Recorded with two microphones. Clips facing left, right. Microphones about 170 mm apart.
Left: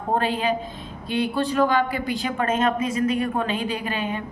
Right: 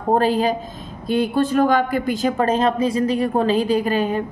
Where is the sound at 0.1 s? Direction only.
40° right (ahead or behind).